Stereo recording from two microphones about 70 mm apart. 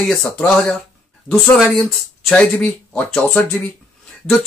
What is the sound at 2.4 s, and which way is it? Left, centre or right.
Speech, centre.